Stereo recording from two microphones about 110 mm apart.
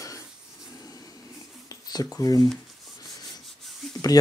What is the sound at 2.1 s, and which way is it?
Speech, 30° left (ahead or behind).